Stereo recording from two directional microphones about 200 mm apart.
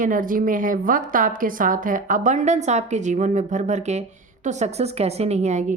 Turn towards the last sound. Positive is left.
turn(degrees=-35)  # may be behind; listen again after turning